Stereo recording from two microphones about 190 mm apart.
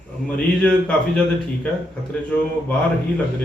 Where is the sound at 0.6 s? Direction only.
5° left (ahead or behind).